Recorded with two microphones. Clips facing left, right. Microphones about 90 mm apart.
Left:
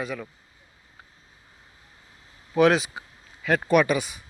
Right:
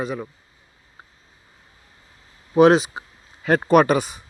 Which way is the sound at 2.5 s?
25° right (ahead or behind).